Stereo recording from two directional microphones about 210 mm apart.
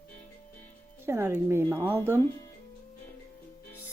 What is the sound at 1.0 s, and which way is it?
Speech, 10° right (ahead or behind).